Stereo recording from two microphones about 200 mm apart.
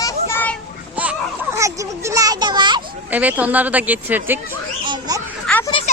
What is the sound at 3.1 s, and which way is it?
Speech, 10° right (ahead or behind).